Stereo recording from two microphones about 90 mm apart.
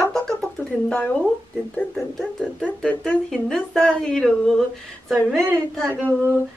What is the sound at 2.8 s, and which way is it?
A woman's voice, 15° left (ahead or behind).